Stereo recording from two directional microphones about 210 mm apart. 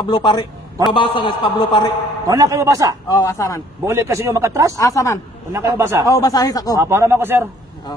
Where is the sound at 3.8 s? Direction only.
15° right (ahead or behind).